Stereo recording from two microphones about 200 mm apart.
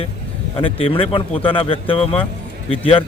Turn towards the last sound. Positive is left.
turn(degrees=25)  # may be behind; listen again after turning